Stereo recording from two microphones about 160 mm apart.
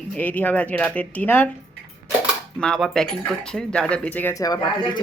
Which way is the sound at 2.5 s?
5° left (ahead or behind).